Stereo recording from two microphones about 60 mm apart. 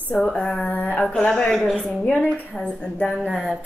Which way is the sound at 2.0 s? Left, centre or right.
Left.